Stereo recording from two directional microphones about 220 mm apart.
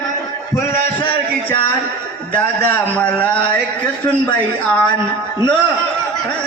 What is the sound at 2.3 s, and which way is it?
Speech, 5° left (ahead or behind).